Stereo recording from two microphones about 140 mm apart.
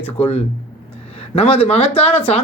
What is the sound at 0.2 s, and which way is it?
A man's voice, 45° left (ahead or behind).